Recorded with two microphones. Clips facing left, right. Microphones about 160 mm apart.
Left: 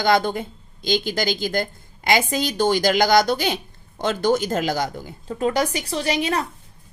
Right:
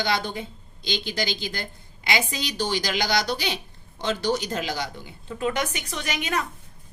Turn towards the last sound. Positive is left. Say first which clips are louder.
# left 6 dB
turn(degrees=30)  # may be behind; listen again after turning